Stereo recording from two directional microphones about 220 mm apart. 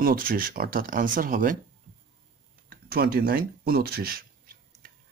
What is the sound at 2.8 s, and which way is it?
Speech, 45° right (ahead or behind).